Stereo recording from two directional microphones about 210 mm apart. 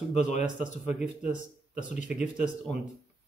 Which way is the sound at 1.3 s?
35° left (ahead or behind).